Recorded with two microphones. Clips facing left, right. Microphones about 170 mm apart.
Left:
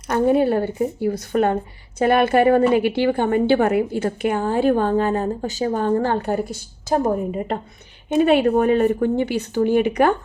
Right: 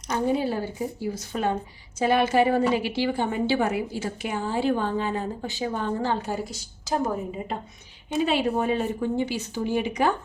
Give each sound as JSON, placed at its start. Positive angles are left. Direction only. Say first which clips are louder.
{"t": 0.1, "sound": "a woman's voice", "louder": "left 8 dB", "side_deg": 60}
{"t": 5.9, "sound": "a woman's voice", "louder": "left 7 dB", "side_deg": 55}